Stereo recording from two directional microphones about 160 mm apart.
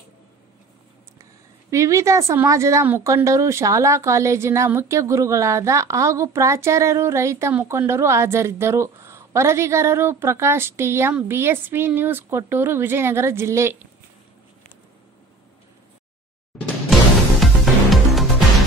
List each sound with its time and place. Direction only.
1.7 s speech: 20° right (ahead or behind)
17.4 s music: centre (ahead or behind)